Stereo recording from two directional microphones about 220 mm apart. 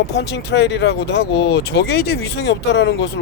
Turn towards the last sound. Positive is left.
turn(degrees=50)  # may be behind; listen again after turning